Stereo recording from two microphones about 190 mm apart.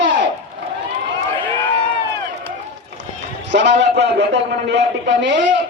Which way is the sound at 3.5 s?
65° right (ahead or behind).